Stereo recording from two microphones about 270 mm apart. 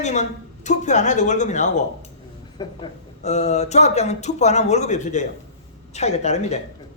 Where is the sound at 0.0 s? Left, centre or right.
Left.